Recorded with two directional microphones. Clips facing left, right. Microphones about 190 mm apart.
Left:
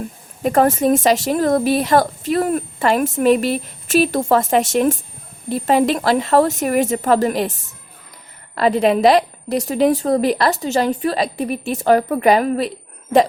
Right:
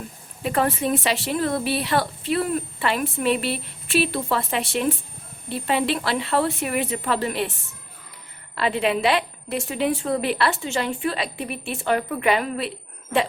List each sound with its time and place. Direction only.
0.4 s a woman's voice: 45° left (ahead or behind)
8.5 s a woman's voice: 40° left (ahead or behind)